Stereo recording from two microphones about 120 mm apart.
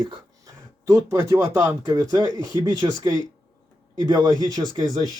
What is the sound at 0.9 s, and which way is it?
Speech, 25° right (ahead or behind).